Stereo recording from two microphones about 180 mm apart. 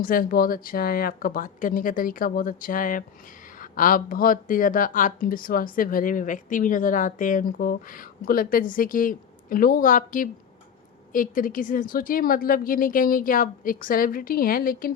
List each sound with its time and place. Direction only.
0.0 s speech: 50° left (ahead or behind)